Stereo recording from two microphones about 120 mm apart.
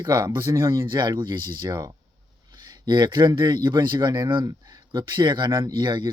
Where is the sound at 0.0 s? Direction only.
35° right (ahead or behind).